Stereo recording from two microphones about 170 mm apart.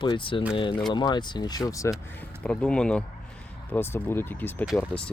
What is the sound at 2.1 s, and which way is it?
Speech, 5° left (ahead or behind).